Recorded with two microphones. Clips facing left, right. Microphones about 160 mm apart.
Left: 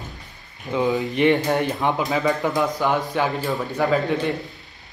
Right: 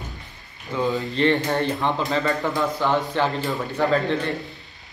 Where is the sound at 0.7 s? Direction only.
20° left (ahead or behind).